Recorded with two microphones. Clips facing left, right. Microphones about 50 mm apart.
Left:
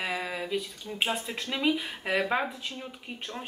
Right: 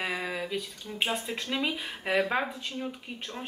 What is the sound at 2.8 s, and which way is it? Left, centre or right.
Speech, centre.